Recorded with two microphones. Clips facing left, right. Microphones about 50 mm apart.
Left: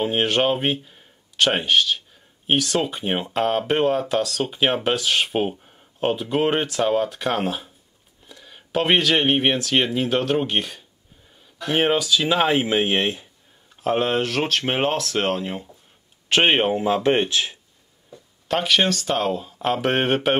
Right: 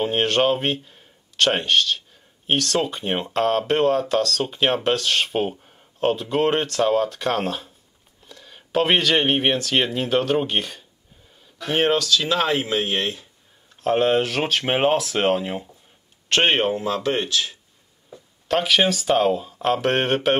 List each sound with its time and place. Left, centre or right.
0.0 s speech: centre; by 13.3 s left
13.7 s speech: centre
16.3 s speech: centre; by 17.6 s left
18.5 s speech: centre